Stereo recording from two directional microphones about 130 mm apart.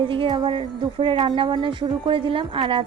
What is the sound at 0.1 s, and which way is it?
A woman's voice, 40° right (ahead or behind).